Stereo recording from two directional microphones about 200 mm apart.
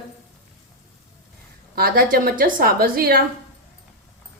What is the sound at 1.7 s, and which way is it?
A woman's voice, 45° right (ahead or behind).